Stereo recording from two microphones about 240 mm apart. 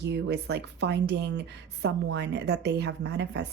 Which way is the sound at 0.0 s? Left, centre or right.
Right.